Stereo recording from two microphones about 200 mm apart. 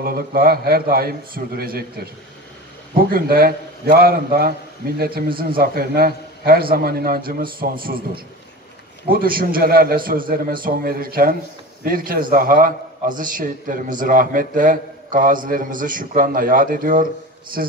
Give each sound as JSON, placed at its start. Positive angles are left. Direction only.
{"t": 0.0, "sound": "a man's voice", "side_deg": -50}
{"t": 2.9, "sound": "a man's voice", "side_deg": -45}
{"t": 9.1, "sound": "a man's voice", "side_deg": -45}